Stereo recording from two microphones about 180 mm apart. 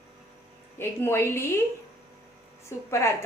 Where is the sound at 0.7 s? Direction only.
15° left (ahead or behind).